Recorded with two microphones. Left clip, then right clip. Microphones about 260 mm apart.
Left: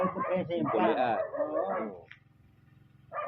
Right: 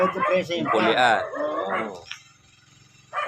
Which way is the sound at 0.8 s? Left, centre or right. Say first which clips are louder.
Right 11 dB; right.